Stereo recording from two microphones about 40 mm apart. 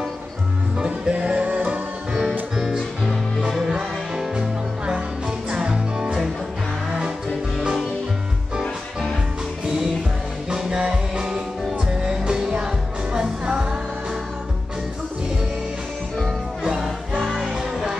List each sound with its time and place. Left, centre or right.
0.7 s music: centre
1.2 s music: right
1.6 s music: centre
4.4 s music: right
10.5 s music: centre
17.2 s music: centre